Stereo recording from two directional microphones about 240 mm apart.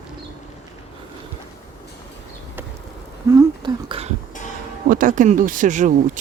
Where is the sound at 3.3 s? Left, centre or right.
Centre.